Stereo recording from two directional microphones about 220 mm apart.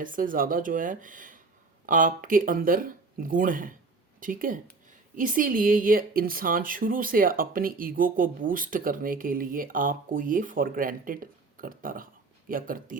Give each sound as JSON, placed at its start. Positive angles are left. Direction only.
{"t": 0.0, "sound": "speech", "side_deg": -40}